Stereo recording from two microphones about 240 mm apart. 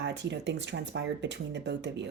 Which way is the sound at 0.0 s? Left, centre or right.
Right.